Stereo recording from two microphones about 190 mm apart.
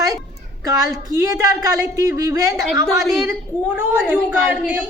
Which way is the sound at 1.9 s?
15° right (ahead or behind).